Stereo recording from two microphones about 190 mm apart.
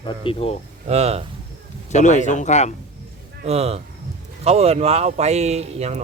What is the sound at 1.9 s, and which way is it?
Speech, 40° left (ahead or behind).